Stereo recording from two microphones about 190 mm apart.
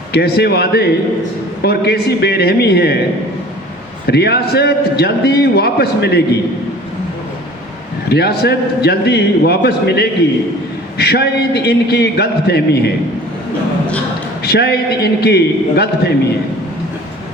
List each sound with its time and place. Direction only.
0.1 s a man's voice: 60° left (ahead or behind)
4.0 s a man's voice: 55° left (ahead or behind)
8.1 s a man's voice: 55° left (ahead or behind)
14.4 s a man's voice: 60° left (ahead or behind)